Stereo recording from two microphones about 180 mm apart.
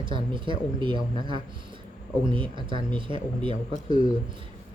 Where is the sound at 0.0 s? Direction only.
25° right (ahead or behind).